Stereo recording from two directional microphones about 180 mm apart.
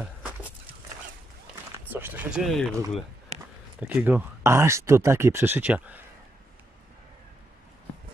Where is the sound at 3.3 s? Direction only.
40° right (ahead or behind).